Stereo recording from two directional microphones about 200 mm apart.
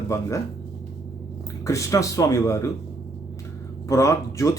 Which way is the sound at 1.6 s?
15° left (ahead or behind).